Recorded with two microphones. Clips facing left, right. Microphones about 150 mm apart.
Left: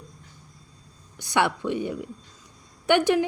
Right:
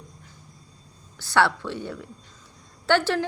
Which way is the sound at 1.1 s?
20° left (ahead or behind).